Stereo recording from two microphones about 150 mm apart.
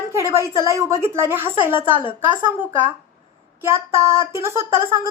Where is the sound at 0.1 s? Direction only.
20° right (ahead or behind).